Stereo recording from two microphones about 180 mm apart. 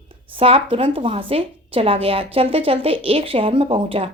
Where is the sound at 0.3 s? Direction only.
30° right (ahead or behind).